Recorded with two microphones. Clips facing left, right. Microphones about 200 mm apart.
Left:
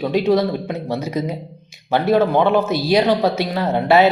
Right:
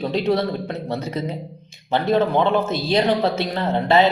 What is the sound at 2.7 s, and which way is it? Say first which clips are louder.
Speech: left 4 dB; 25° right (ahead or behind).